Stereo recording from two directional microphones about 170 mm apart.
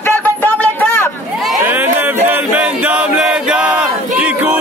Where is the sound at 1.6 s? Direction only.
10° right (ahead or behind).